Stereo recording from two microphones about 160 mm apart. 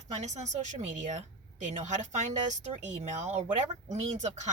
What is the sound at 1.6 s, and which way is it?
A woman's voice, 50° right (ahead or behind).